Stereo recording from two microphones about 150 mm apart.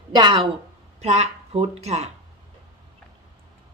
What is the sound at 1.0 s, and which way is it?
Speech, 45° right (ahead or behind).